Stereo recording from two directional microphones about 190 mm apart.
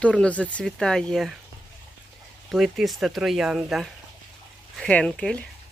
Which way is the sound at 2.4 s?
Centre (ahead or behind).